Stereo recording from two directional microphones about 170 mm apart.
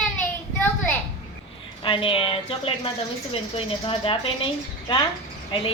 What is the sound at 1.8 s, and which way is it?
Speech, 35° left (ahead or behind).